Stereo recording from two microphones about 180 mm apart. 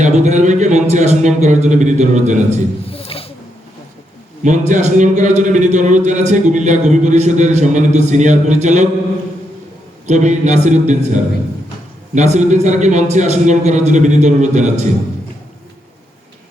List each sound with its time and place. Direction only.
0.0 s a man's voice: 40° right (ahead or behind)
2.8 s a sound: 30° left (ahead or behind)
4.4 s a man's voice: 40° right (ahead or behind)
10.1 s a man's voice: 40° right (ahead or behind)